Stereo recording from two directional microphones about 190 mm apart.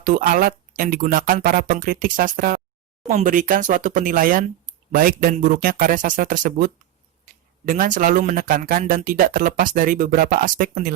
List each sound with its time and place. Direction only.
0.0 s speech: 45° right (ahead or behind)